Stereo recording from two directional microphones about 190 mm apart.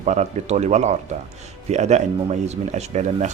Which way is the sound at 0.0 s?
35° right (ahead or behind).